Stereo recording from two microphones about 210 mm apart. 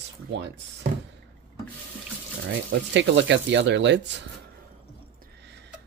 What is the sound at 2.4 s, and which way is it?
Speech, 55° right (ahead or behind).